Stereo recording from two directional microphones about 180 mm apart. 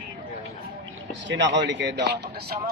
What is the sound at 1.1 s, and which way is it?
Speech, 85° right.